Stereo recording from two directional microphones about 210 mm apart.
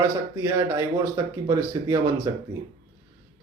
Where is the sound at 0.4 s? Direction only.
15° right (ahead or behind).